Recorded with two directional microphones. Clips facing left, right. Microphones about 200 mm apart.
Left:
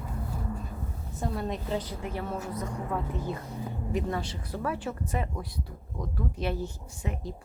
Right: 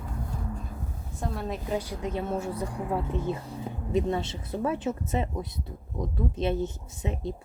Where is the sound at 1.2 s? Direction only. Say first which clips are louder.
Left 1 dB; centre (ahead or behind).